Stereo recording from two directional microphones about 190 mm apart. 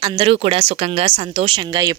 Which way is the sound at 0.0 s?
30° right (ahead or behind).